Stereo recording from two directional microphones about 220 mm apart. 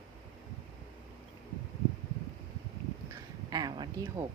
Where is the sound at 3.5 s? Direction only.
20° right (ahead or behind).